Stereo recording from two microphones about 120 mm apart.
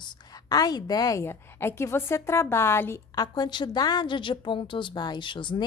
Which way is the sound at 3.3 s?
40° left (ahead or behind).